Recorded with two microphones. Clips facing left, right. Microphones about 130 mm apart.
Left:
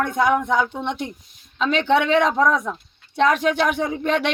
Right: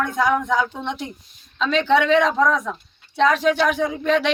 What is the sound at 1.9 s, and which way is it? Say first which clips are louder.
Speech: right 1 dB; 55° left (ahead or behind).